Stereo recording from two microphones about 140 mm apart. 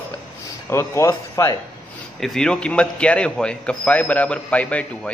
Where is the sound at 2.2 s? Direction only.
5° left (ahead or behind).